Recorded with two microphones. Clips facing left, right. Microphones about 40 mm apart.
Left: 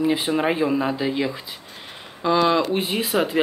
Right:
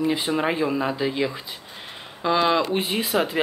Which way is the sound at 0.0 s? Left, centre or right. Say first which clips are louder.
Left 2 dB; centre.